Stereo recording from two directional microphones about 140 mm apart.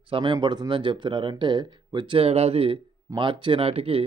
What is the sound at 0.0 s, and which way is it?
A man's voice, 40° right (ahead or behind).